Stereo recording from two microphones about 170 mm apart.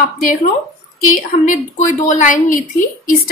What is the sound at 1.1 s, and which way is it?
A woman's voice, 50° left (ahead or behind).